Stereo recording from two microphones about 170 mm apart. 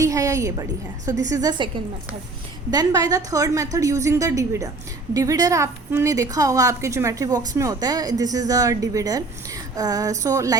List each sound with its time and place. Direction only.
0.0 s a woman's voice: 20° right (ahead or behind)